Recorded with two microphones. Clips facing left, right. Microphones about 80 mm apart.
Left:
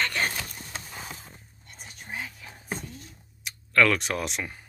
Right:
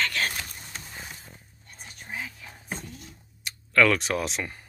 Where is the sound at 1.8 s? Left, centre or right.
Centre.